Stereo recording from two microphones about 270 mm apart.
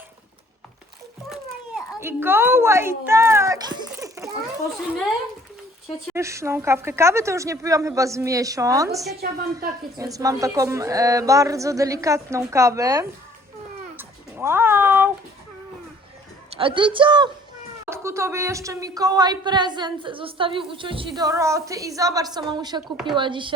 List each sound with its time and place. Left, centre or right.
1.3 s a sound: centre
6.1 s speech: centre
13.9 s cat: centre
16.5 s a woman's voice: centre